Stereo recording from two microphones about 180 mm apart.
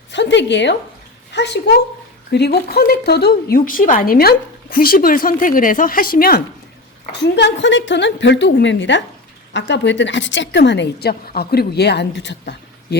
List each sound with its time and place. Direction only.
0.1 s a woman's voice: 80° left; by 6.4 s 55° left (ahead or behind)
7.1 s a woman's voice: 70° left (ahead or behind)